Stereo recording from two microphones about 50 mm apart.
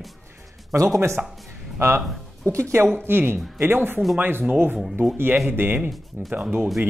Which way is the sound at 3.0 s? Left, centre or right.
Right.